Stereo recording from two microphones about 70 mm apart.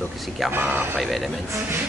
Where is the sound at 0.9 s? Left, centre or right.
Centre.